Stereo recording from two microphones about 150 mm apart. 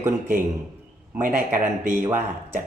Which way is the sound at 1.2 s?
65° right (ahead or behind).